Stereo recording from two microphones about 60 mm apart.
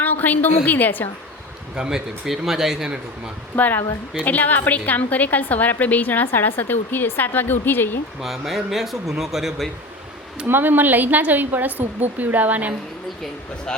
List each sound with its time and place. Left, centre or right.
0.0 s a woman's voice: left
1.7 s speech: centre
3.5 s a woman's voice: left
8.2 s speech: centre
10.4 s speech: right